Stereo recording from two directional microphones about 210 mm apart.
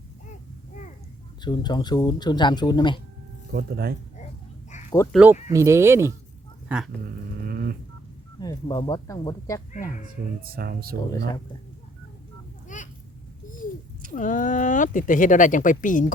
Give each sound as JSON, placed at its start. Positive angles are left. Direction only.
{"t": 1.5, "sound": "speech", "side_deg": 20}
{"t": 3.5, "sound": "speech", "side_deg": -45}
{"t": 5.1, "sound": "speech", "side_deg": -10}
{"t": 7.4, "sound": "a sound", "side_deg": -45}
{"t": 8.4, "sound": "speech", "side_deg": 20}
{"t": 10.5, "sound": "speech", "side_deg": -45}
{"t": 12.6, "sound": "a sound", "side_deg": 35}
{"t": 14.1, "sound": "speech", "side_deg": 40}